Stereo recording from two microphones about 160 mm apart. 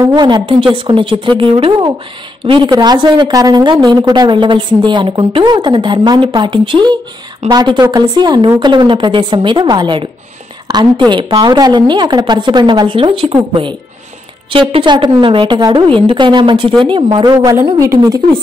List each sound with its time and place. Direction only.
0.0 s a woman's voice: 25° right (ahead or behind)